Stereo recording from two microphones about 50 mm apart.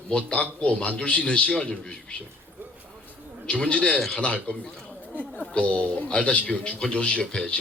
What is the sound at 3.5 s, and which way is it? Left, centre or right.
A man's voice, left.